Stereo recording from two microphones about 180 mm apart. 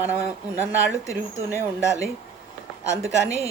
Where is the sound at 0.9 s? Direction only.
15° left (ahead or behind).